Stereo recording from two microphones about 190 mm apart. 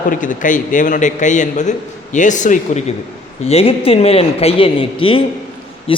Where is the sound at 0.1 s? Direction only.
45° left (ahead or behind).